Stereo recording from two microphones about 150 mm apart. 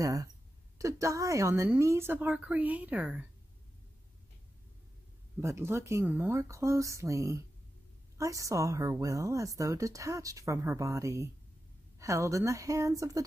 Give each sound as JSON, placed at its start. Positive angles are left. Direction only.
{"t": 0.0, "sound": "speech", "side_deg": -20}
{"t": 5.4, "sound": "speech", "side_deg": -20}